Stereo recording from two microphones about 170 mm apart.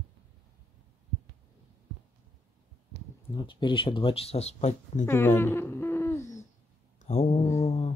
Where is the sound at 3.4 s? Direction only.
30° left (ahead or behind).